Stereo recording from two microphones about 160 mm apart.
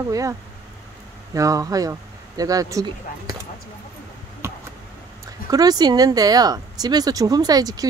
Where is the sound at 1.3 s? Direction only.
20° right (ahead or behind).